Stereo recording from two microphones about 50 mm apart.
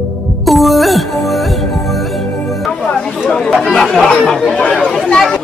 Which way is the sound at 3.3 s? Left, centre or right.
Centre.